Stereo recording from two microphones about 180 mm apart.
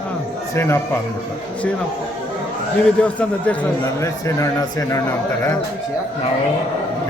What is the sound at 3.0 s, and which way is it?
A man's voice, 5° left (ahead or behind).